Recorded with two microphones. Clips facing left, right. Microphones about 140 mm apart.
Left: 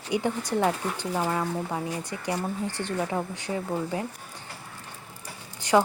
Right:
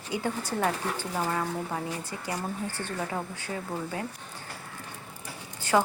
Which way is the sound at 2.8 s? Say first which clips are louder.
Left 6 dB; 20° left (ahead or behind).